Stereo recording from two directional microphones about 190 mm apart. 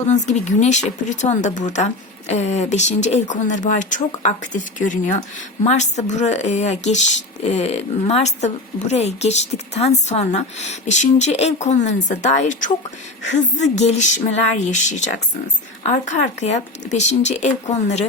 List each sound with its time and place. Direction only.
0.1 s speech: 40° left (ahead or behind)